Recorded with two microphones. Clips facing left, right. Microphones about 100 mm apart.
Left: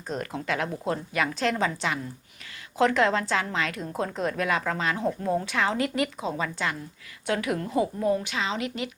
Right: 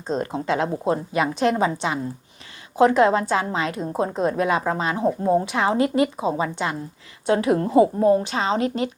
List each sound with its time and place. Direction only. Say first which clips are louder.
0.1 s a woman's voice: right 6 dB; 25° right (ahead or behind)